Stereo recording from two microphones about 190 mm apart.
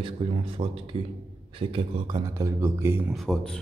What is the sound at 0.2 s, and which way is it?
A man's voice, 30° right (ahead or behind).